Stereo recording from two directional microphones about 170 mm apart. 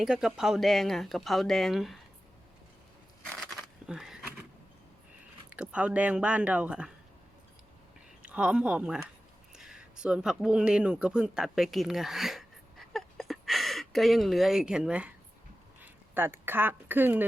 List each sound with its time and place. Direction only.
0.0 s speech: 5° right (ahead or behind)
3.2 s a sound: centre (ahead or behind)
5.5 s speech: 5° right (ahead or behind)
8.2 s speech: 5° right (ahead or behind)